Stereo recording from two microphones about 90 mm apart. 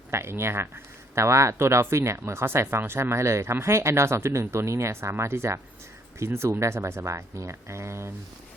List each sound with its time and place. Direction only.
0.1 s speech: 30° right (ahead or behind)